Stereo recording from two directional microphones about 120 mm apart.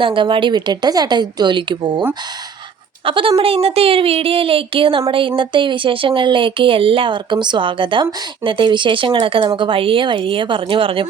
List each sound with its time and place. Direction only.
0.0 s speech: 45° right (ahead or behind)